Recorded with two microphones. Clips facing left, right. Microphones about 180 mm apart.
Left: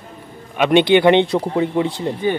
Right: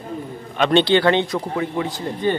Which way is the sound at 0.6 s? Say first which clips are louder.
Left 3 dB; 15° left (ahead or behind).